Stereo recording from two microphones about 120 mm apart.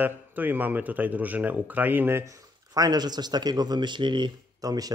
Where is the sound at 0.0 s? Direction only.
15° right (ahead or behind).